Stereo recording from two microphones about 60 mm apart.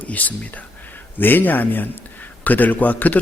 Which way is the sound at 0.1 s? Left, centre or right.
Left.